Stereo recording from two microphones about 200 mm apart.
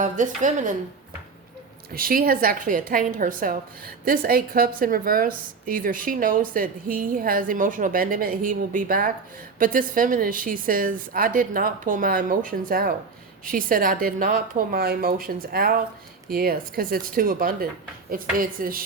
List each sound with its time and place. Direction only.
0.0 s a woman's voice: 40° right (ahead or behind)
1.9 s a woman's voice: 45° right (ahead or behind)